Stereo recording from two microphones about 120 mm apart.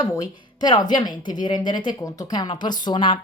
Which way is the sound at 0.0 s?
30° left (ahead or behind).